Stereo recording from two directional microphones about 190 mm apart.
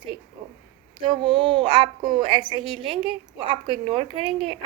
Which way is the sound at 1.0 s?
25° right (ahead or behind).